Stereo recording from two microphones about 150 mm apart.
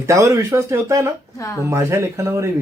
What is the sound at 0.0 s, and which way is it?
Speech, 20° right (ahead or behind).